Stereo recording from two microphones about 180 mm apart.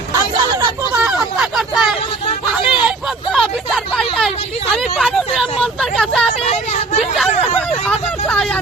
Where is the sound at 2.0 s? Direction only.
30° left (ahead or behind).